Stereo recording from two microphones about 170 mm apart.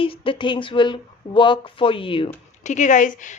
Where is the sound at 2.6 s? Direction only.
45° left (ahead or behind).